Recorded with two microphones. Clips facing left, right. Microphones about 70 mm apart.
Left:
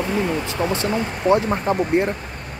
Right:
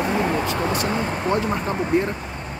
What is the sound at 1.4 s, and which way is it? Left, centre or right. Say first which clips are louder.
Speech: left 3 dB; left.